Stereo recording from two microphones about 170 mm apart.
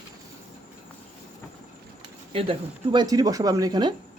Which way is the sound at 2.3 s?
35° right (ahead or behind).